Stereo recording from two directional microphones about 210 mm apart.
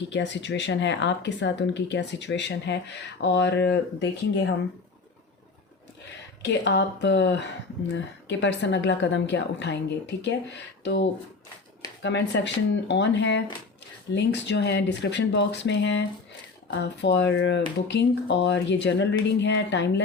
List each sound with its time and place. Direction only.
0.1 s speech: 55° left (ahead or behind)
6.4 s speech: 55° left (ahead or behind)